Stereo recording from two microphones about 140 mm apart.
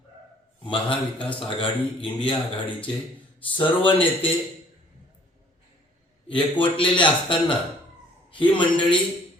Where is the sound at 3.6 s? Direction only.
35° left (ahead or behind).